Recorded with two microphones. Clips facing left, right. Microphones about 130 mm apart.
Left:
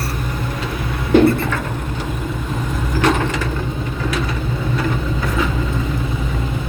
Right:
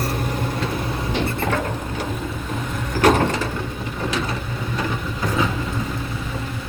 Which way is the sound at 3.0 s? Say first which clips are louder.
Right 1 dB; 45° right (ahead or behind).